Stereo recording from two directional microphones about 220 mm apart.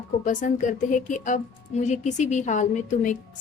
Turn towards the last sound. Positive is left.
turn(degrees=35)  # may be behind; listen again after turning